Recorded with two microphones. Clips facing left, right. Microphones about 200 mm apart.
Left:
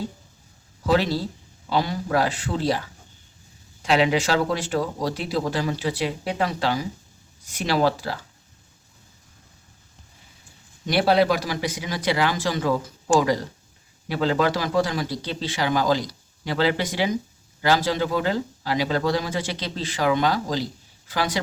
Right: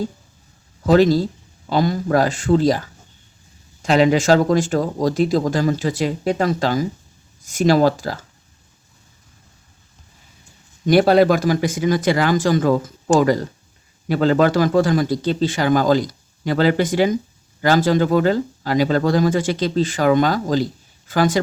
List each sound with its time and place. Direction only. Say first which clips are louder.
0.9 s speech: right 8 dB; 45° right (ahead or behind)
10.8 s speech: right 6 dB; 45° right (ahead or behind)